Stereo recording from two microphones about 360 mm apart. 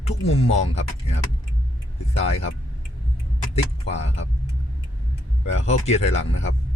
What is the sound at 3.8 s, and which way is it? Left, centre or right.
Speech, centre.